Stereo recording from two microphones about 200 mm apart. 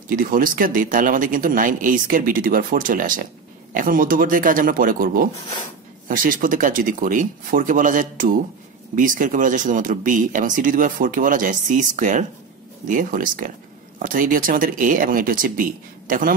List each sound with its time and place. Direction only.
0.1 s speech: 45° right (ahead or behind)